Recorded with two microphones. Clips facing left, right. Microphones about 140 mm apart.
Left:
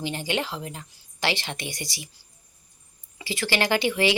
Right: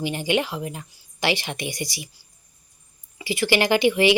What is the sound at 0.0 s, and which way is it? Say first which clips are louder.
Speech: right 5 dB; 15° right (ahead or behind).